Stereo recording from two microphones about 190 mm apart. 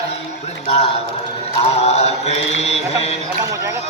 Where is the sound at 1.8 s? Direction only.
35° left (ahead or behind).